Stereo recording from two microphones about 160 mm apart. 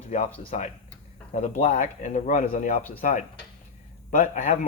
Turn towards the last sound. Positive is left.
turn(degrees=50)  # may be behind; listen again after turning